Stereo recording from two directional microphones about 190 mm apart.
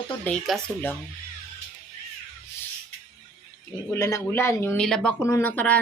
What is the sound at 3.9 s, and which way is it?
Speech, 15° left (ahead or behind).